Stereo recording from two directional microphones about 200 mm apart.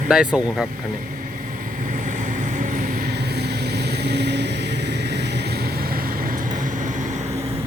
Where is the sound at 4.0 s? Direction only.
55° right (ahead or behind).